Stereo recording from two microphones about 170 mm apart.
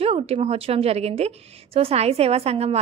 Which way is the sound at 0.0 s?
35° right (ahead or behind).